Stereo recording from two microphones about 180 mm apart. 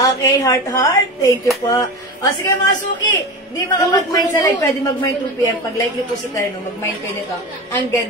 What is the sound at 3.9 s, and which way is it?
A woman's voice, 20° left (ahead or behind).